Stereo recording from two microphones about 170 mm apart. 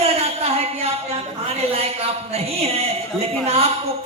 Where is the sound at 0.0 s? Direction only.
35° right (ahead or behind).